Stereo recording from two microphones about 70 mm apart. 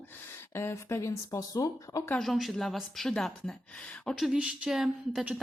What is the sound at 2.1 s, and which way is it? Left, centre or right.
Speech, centre.